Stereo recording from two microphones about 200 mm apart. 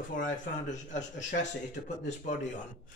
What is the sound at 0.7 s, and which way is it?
Speech, 35° left (ahead or behind).